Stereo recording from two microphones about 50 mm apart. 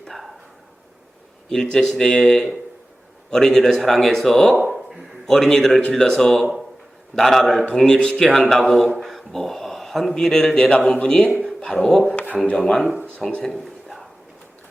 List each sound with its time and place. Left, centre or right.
0.1 s a sound: centre
1.5 s a man's voice: centre
7.6 s speech: centre
8.2 s speech: centre
12.0 s speech: left
13.5 s a sound: centre